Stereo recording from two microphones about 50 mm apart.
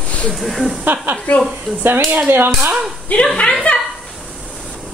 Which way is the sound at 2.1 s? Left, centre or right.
Right.